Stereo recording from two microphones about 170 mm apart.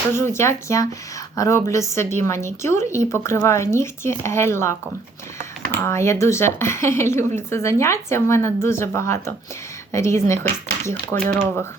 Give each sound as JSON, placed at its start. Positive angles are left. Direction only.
{"t": 0.1, "sound": "speech", "side_deg": 15}